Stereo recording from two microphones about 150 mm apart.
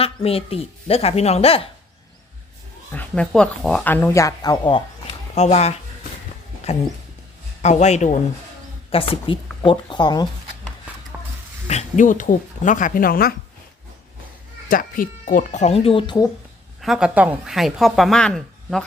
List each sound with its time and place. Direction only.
0.0 s a woman's voice: 40° left (ahead or behind)
2.9 s speech: 10° left (ahead or behind); by 4.8 s 30° left (ahead or behind)
5.3 s speech: 50° left (ahead or behind)
7.6 s speech: 50° left (ahead or behind)
8.9 s a woman's voice: 35° left (ahead or behind)
11.7 s speech: 50° left (ahead or behind); by 13.3 s 75° left (ahead or behind)
14.7 s speech: 70° left (ahead or behind); by 16.3 s 30° left (ahead or behind)
16.8 s a woman's voice: 5° right (ahead or behind)